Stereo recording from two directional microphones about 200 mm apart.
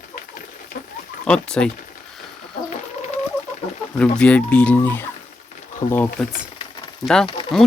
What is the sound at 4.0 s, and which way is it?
Speech, 5° left (ahead or behind).